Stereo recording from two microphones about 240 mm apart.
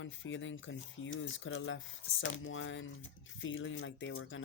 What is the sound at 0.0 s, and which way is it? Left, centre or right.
Speech, left.